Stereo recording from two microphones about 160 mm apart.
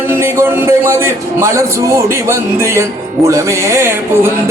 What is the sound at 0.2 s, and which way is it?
A man's voice, 15° right (ahead or behind).